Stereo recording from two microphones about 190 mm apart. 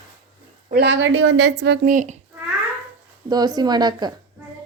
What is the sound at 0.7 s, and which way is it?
A woman's voice, 60° right (ahead or behind).